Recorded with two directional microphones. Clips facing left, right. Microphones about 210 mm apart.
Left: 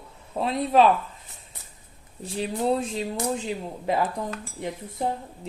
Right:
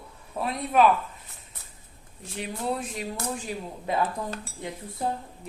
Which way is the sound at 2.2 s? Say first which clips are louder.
Left 6 dB; 30° left (ahead or behind).